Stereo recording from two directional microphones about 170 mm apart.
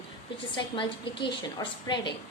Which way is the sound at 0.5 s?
30° left (ahead or behind).